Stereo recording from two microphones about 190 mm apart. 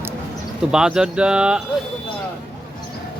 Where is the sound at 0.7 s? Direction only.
5° right (ahead or behind).